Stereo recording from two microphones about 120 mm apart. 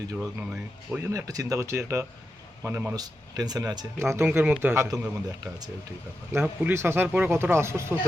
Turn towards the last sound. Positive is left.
turn(degrees=-20)  # may be behind; listen again after turning